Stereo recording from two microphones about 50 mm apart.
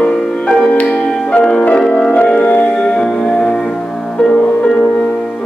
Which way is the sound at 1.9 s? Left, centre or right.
Centre.